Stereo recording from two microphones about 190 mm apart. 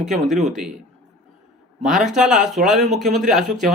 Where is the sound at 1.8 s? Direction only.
Centre (ahead or behind).